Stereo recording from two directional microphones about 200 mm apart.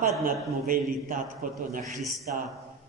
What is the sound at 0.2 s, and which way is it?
A man's voice, 45° right (ahead or behind).